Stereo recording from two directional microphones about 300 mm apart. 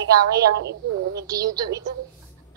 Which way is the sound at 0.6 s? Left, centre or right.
Right.